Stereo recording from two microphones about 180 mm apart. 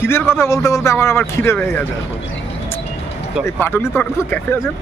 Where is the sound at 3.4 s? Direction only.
15° left (ahead or behind).